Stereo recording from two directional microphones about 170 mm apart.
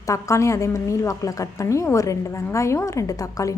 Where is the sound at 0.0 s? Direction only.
20° left (ahead or behind).